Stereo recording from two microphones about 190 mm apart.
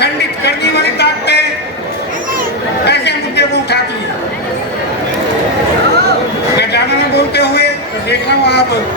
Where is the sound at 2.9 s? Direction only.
60° left (ahead or behind).